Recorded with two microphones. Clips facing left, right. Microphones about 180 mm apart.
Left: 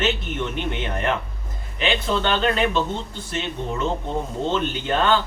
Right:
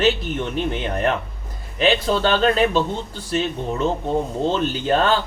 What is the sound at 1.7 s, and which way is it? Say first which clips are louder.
Speech: right 4 dB; 35° right (ahead or behind).